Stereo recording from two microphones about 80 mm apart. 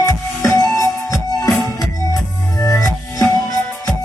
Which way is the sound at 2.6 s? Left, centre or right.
Left.